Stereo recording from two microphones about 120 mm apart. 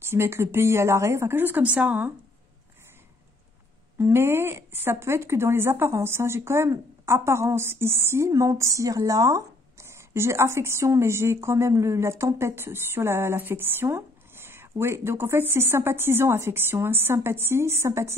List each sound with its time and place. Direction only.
0.0 s speech: 20° right (ahead or behind)
4.0 s speech: 20° right (ahead or behind)